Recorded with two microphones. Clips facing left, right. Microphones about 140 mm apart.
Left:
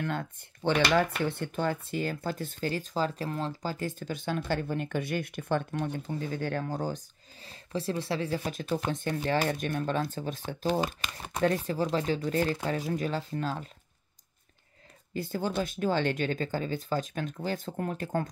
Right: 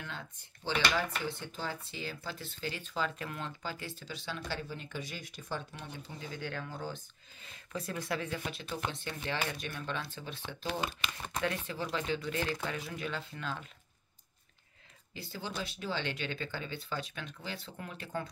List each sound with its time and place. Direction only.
0.0 s speech: 55° left (ahead or behind)
5.8 s speech: 45° left (ahead or behind)
15.1 s speech: 50° left (ahead or behind)